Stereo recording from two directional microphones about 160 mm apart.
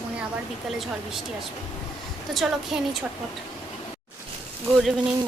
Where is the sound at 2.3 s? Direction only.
Centre (ahead or behind).